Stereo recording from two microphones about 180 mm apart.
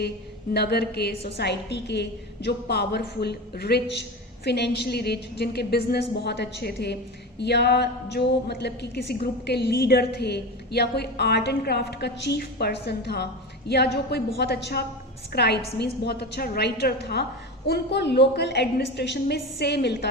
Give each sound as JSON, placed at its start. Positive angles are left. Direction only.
{"t": 0.5, "sound": "a woman's voice", "side_deg": 65}